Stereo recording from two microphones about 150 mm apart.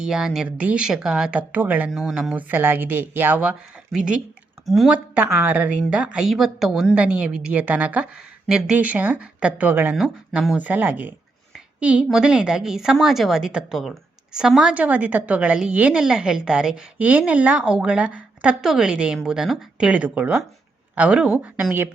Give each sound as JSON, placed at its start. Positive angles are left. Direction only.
{"t": 0.0, "sound": "a woman's voice", "side_deg": -5}
{"t": 5.1, "sound": "a woman's voice", "side_deg": -15}
{"t": 11.5, "sound": "a sound", "side_deg": -10}
{"t": 12.0, "sound": "a woman's voice", "side_deg": -5}